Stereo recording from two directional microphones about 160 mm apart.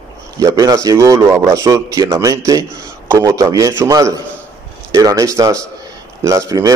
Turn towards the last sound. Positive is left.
turn(degrees=-20)  # may be behind; listen again after turning